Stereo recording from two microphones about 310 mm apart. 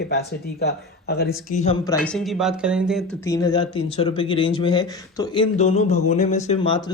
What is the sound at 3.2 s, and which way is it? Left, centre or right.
Speech, centre.